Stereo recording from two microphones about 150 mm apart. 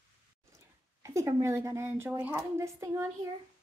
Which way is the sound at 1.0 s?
20° right (ahead or behind).